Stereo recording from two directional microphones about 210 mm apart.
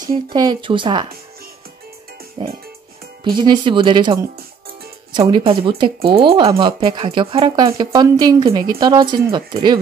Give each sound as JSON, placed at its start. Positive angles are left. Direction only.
{"t": 0.0, "sound": "speech", "side_deg": -20}
{"t": 2.4, "sound": "music", "side_deg": -25}
{"t": 3.3, "sound": "speech", "side_deg": -20}